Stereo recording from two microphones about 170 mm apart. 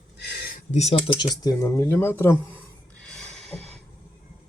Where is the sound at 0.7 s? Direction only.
40° left (ahead or behind).